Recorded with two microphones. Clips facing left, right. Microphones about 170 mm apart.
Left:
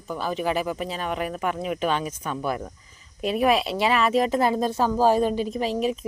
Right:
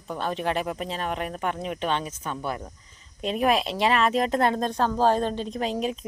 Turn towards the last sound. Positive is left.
turn(degrees=5)  # may be behind; listen again after turning